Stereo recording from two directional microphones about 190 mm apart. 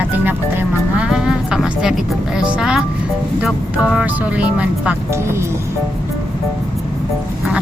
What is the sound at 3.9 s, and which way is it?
Speech, 5° right (ahead or behind).